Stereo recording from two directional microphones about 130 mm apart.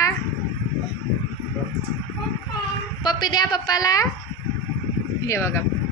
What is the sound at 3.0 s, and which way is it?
A woman's voice, 30° left (ahead or behind).